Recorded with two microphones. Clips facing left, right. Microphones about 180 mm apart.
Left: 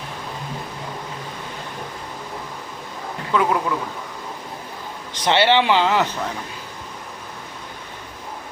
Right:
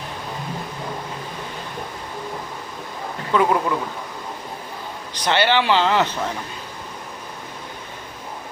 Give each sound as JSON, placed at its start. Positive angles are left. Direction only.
{"t": 3.3, "sound": "a man's voice", "side_deg": 0}
{"t": 5.2, "sound": "speech", "side_deg": 25}